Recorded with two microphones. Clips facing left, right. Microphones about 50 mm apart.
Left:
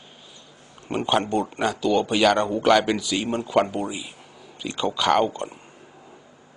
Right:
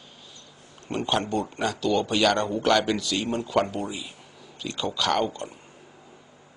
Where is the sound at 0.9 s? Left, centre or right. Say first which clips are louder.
Left 3 dB; centre.